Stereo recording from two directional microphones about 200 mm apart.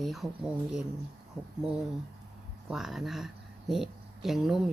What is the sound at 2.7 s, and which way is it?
Speech, centre (ahead or behind).